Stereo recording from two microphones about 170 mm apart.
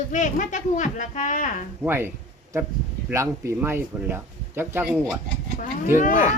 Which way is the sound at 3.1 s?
15° right (ahead or behind).